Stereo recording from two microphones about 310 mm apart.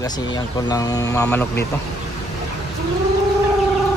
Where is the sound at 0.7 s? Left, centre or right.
Centre.